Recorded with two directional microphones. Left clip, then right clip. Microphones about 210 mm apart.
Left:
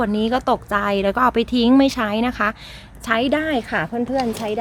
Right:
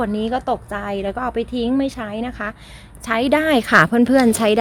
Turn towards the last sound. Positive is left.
turn(degrees=-45)  # may be behind; listen again after turning